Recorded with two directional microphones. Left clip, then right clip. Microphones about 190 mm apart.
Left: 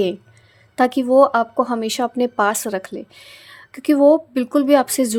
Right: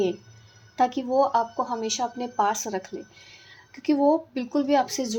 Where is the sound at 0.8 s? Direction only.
50° left (ahead or behind).